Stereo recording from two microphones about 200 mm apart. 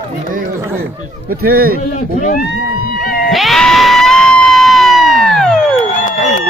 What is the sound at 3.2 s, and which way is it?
Cat, centre (ahead or behind).